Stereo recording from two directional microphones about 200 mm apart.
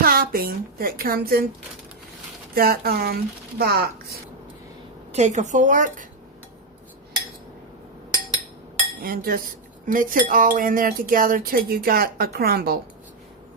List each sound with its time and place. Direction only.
0.0 s speech: 45° right (ahead or behind)
2.6 s cutlery: 50° right (ahead or behind)
5.1 s a woman's voice: 35° right (ahead or behind)
9.0 s cutlery: 50° right (ahead or behind)